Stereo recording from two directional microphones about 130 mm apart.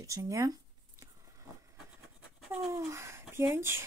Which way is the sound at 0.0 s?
25° right (ahead or behind).